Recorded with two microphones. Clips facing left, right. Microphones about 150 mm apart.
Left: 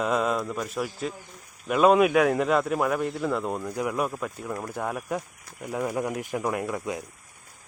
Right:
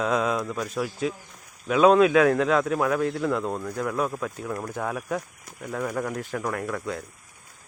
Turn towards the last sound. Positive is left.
turn(degrees=15)  # may be behind; listen again after turning